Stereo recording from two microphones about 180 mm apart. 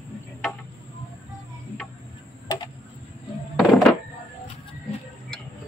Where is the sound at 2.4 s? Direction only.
25° left (ahead or behind).